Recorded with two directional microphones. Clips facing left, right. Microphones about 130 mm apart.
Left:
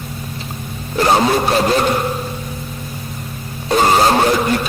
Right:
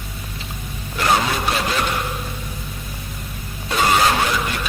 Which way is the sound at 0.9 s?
35° left (ahead or behind).